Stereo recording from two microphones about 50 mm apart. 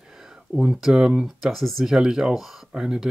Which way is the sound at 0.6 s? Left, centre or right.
Centre.